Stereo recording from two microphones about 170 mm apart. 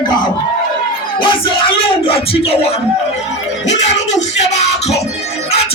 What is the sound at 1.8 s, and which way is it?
Speech, 35° left (ahead or behind).